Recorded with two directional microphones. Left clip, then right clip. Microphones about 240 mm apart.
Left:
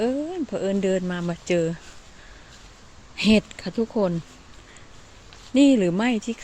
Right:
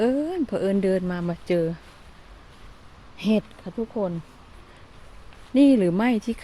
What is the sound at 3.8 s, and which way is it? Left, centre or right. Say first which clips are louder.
Speech: left 4 dB; left.